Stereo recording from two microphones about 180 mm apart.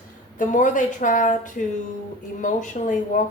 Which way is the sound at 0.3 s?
45° left (ahead or behind).